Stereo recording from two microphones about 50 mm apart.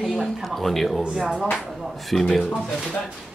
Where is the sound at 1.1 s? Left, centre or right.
Centre.